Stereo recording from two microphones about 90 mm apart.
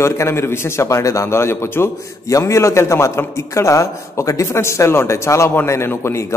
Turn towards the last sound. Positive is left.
turn(degrees=30)  # may be behind; listen again after turning